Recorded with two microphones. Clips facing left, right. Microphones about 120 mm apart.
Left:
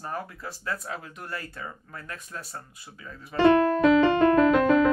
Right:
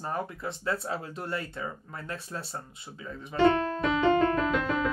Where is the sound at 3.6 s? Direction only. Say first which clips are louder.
Left 6 dB; 70° left (ahead or behind).